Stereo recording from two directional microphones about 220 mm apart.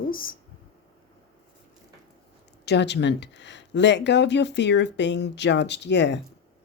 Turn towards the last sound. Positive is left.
turn(degrees=55)  # may be behind; listen again after turning